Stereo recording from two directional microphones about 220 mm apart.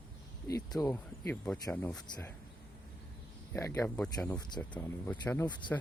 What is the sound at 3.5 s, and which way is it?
Speech, 15° left (ahead or behind).